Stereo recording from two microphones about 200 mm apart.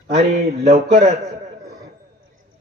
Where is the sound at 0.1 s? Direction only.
30° right (ahead or behind).